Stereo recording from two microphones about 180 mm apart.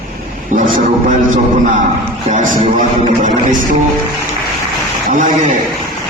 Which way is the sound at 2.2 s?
40° right (ahead or behind).